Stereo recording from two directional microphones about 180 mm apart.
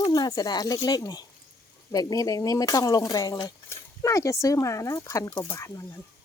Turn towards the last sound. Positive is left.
turn(degrees=15)  # may be behind; listen again after turning